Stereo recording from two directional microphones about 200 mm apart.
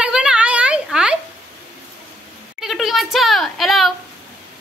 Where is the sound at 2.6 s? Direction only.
Centre (ahead or behind).